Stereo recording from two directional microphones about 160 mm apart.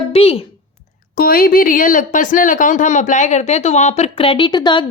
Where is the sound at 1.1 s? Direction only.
65° left (ahead or behind).